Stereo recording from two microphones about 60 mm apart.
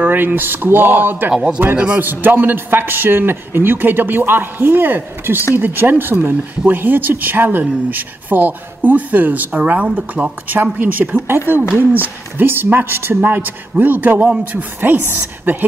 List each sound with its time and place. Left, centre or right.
0.0 s a man's voice: right
10.6 s a man's voice: right